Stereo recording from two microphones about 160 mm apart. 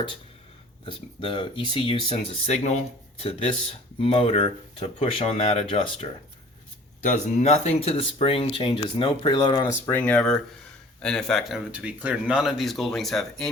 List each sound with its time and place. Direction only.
0.9 s speech: 30° left (ahead or behind)
7.0 s speech: 50° left (ahead or behind); by 10.0 s 20° left (ahead or behind)
10.0 s speech: 5° left (ahead or behind)